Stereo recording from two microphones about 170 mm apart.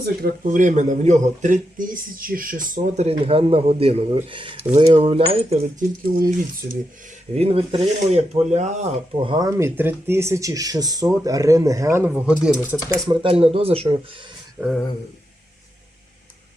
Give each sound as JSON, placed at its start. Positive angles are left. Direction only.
{"t": 0.0, "sound": "speech", "side_deg": -65}
{"t": 6.1, "sound": "speech", "side_deg": -55}
{"t": 7.3, "sound": "speech", "side_deg": -35}
{"t": 9.2, "sound": "speech", "side_deg": -25}
{"t": 13.1, "sound": "speech", "side_deg": -35}